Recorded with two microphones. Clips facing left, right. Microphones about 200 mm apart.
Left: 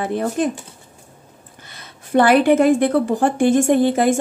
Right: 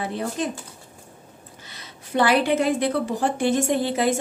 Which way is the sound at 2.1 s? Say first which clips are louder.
Left 6 dB; 50° left (ahead or behind).